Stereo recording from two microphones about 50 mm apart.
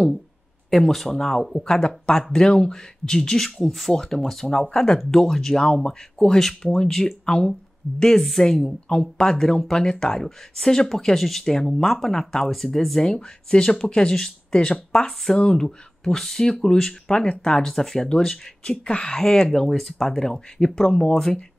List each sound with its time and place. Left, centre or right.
0.7 s speech: centre
1.6 s speech: centre
7.2 s speech: centre
8.0 s speech: centre
13.0 s speech: centre